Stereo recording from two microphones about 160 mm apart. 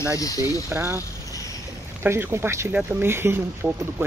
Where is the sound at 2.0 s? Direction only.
15° right (ahead or behind).